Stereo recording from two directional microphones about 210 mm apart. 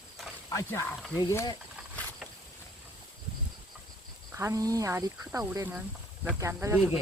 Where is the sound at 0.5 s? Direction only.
15° left (ahead or behind).